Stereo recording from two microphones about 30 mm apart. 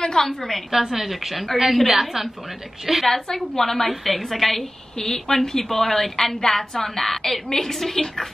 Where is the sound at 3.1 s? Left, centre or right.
Centre.